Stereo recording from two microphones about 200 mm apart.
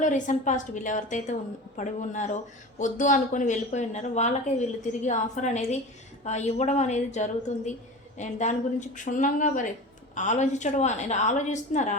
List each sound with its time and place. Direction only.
0.0 s a woman's voice: 40° left (ahead or behind)